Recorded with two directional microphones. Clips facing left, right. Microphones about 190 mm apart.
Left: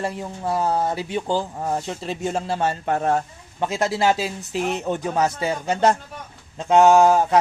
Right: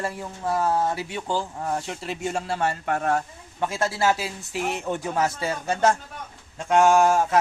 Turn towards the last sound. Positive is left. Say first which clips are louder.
# left 4 dB
turn(degrees=20)  # may be behind; listen again after turning